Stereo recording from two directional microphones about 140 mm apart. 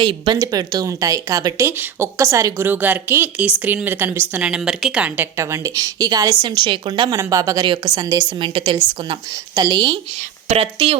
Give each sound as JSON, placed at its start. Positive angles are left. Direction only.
{"t": 0.0, "sound": "a woman's voice", "side_deg": -35}
{"t": 7.2, "sound": "a woman's voice", "side_deg": -25}
{"t": 10.5, "sound": "speech", "side_deg": -45}